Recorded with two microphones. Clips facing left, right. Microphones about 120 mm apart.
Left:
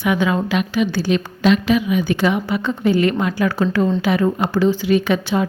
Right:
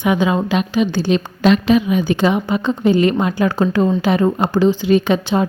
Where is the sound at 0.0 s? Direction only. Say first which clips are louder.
Right 2 dB; 20° right (ahead or behind).